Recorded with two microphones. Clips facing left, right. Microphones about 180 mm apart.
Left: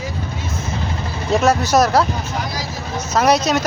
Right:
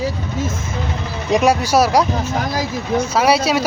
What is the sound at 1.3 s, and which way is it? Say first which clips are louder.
Speech: right 1 dB; 10° right (ahead or behind).